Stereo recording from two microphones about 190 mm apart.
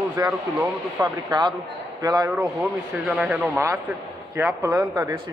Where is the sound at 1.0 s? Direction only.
20° right (ahead or behind).